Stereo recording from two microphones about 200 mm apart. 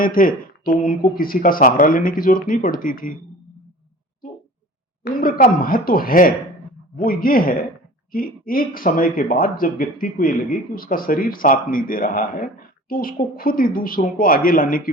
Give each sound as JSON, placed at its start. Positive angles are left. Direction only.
{"t": 0.0, "sound": "speech", "side_deg": 45}
{"t": 5.2, "sound": "speech", "side_deg": 45}